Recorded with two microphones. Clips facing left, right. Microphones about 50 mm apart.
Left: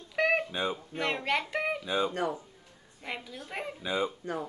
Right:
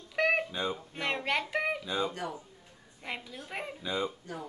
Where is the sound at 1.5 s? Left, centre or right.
Centre.